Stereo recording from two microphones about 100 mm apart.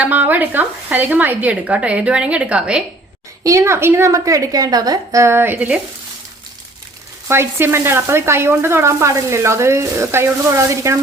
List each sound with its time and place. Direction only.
0.0 s speech: 15° right (ahead or behind)
3.4 s sizzle: 30° right (ahead or behind); by 5.8 s 15° right (ahead or behind)
7.3 s sizzle: 25° right (ahead or behind)